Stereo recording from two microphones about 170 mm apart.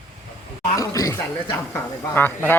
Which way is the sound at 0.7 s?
20° left (ahead or behind).